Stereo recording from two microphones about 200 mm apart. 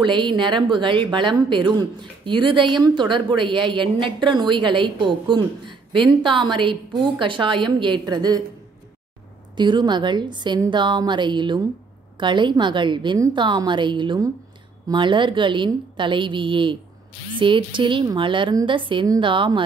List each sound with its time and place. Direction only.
0.0 s speech: 25° right (ahead or behind)
9.6 s speech: 20° right (ahead or behind)